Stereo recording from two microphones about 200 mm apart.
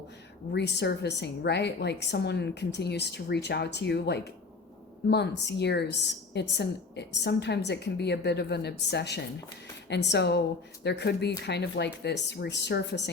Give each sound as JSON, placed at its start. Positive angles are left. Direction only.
{"t": 0.5, "sound": "a woman's voice", "side_deg": 60}